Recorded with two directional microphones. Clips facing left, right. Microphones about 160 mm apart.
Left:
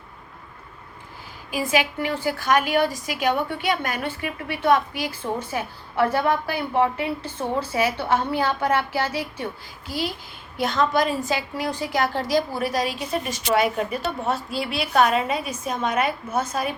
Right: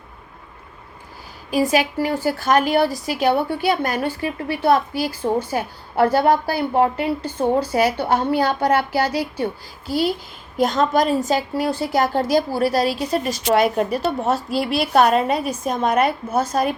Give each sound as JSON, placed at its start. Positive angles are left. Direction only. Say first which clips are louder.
{"t": 1.7, "sound": "a woman's voice", "louder": "right 4 dB", "side_deg": -40}